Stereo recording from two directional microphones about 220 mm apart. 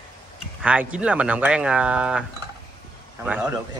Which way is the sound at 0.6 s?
5° right (ahead or behind).